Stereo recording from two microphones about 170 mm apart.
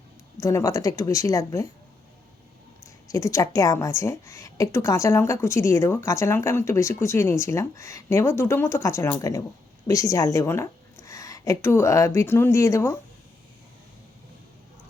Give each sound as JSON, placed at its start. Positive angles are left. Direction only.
{"t": 0.3, "sound": "speech", "side_deg": 20}
{"t": 2.8, "sound": "a woman's voice", "side_deg": 20}